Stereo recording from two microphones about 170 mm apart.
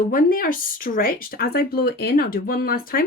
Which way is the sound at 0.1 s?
55° left (ahead or behind).